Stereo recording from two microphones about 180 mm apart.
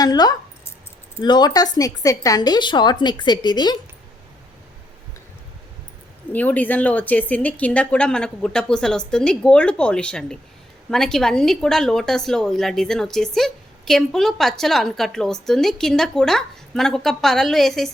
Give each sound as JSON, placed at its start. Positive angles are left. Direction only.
{"t": 0.0, "sound": "a woman's voice", "side_deg": 20}
{"t": 6.3, "sound": "a woman's voice", "side_deg": 10}